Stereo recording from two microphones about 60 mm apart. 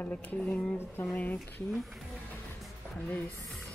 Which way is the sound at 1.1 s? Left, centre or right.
Left.